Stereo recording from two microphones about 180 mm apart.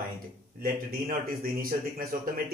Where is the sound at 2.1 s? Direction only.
50° right (ahead or behind).